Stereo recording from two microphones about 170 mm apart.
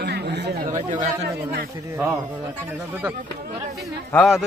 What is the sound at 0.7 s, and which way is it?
Speech, 45° right (ahead or behind).